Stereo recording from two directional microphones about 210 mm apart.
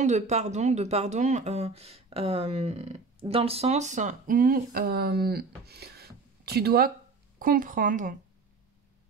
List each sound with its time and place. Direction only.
0.0 s speech: 35° right (ahead or behind)